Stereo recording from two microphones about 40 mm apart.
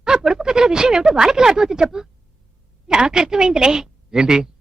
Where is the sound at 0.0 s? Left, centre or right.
Centre.